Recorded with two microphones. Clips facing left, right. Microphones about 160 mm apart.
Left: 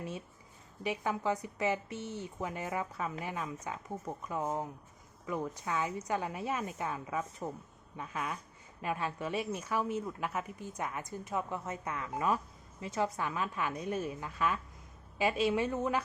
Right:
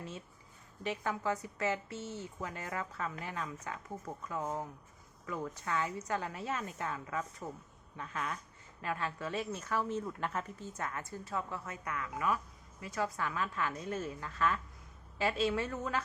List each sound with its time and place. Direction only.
0.8 s a woman's voice: 15° left (ahead or behind)